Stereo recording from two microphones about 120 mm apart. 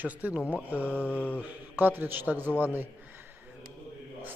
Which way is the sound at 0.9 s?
15° left (ahead or behind).